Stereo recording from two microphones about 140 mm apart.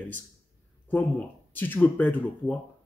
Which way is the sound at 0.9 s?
15° left (ahead or behind).